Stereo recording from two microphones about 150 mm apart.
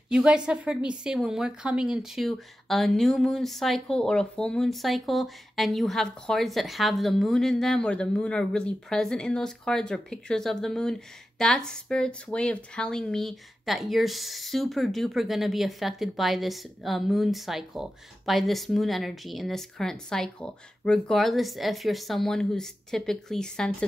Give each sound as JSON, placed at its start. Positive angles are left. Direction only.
{"t": 0.1, "sound": "a woman's voice", "side_deg": -5}